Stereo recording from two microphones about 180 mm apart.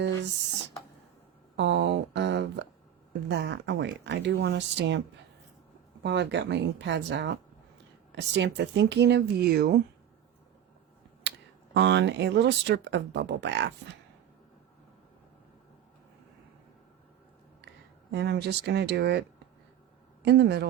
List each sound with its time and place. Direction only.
1.5 s a sound: 80° right
3.1 s speech: 80° right
6.0 s speech: 70° right (ahead or behind)
11.2 s speech: 75° right (ahead or behind)
18.1 s speech: 65° right (ahead or behind)
20.2 s speech: 65° right (ahead or behind)